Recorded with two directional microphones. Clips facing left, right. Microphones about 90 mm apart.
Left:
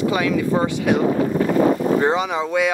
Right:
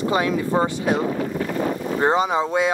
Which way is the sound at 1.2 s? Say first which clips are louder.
Left 7 dB; 90° left.